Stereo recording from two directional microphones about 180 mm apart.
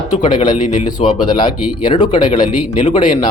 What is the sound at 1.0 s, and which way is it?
Speech, 35° left (ahead or behind).